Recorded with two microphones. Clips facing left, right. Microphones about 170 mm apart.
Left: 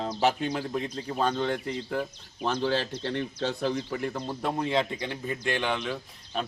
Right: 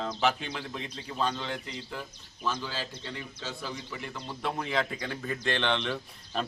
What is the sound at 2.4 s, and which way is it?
Speech, 60° left (ahead or behind).